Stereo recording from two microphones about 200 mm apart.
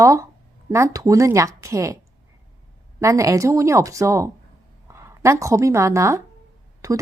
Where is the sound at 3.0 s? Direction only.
15° right (ahead or behind).